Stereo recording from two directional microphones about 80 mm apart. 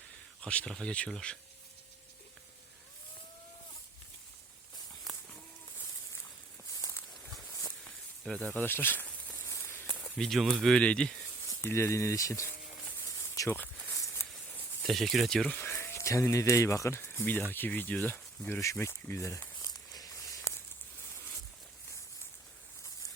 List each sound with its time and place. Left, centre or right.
0.4 s speech: centre
7.9 s snake: centre
8.7 s speech: left
9.5 s a sound: left
9.7 s snake: centre
10.2 s speech: centre
11.4 s speech: left
13.1 s a sound: left
14.8 s speech: centre
15.5 s speech: left
18.6 s speech: left
19.5 s a sound: left